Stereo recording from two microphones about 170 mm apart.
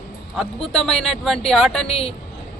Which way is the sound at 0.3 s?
5° left (ahead or behind).